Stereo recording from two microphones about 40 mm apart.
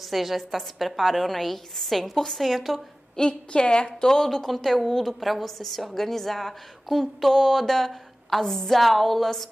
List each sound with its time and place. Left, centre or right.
0.0 s a woman's voice: centre
3.2 s a woman's voice: left
4.1 s a woman's voice: centre